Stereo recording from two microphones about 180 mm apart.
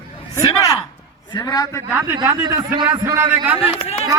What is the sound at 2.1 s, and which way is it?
A man's voice, 20° right (ahead or behind).